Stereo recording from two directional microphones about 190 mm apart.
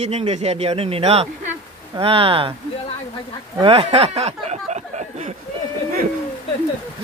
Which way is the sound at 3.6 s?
30° right (ahead or behind).